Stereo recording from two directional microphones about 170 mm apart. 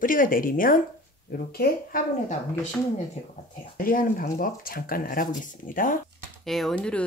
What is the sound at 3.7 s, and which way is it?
Speech, 55° left (ahead or behind).